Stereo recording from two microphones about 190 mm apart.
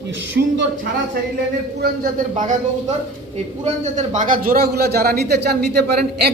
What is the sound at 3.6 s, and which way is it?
A man's voice, 40° right (ahead or behind).